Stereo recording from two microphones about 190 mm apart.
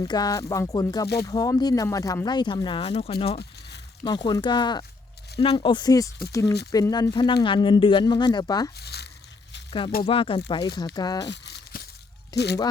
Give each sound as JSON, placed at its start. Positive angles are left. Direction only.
{"t": 0.1, "sound": "speech", "side_deg": 20}
{"t": 8.8, "sound": "speech", "side_deg": 60}
{"t": 10.0, "sound": "speech", "side_deg": 30}
{"t": 11.3, "sound": "crumpling", "side_deg": 60}
{"t": 12.3, "sound": "speech", "side_deg": 20}